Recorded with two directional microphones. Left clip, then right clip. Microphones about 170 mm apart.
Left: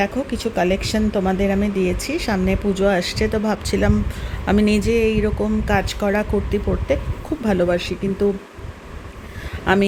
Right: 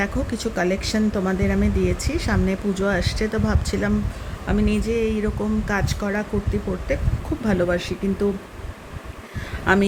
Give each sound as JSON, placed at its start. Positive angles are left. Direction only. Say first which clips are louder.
{"t": 0.0, "sound": "speech", "louder": "left 3 dB", "side_deg": 15}
{"t": 4.4, "sound": "speech", "louder": "left 5 dB", "side_deg": 35}
{"t": 7.4, "sound": "speech", "louder": "left 3 dB", "side_deg": 20}
{"t": 9.7, "sound": "speech", "louder": "left 1 dB", "side_deg": 20}